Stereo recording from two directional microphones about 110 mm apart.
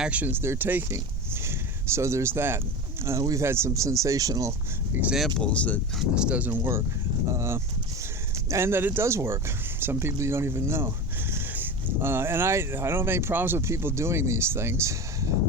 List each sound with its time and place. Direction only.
0.0 s speech: 15° right (ahead or behind); by 4.5 s 30° right (ahead or behind)
5.4 s speech: 10° left (ahead or behind)
6.0 s speech: 10° right (ahead or behind); by 15.3 s 25° right (ahead or behind)